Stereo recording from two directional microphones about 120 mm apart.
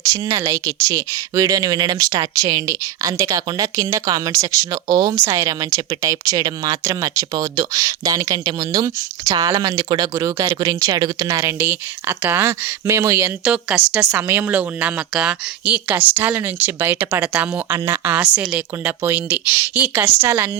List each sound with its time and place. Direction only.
0.0 s speech: 30° right (ahead or behind)
10.2 s a woman's voice: 25° right (ahead or behind)
17.7 s a woman's voice: 20° right (ahead or behind)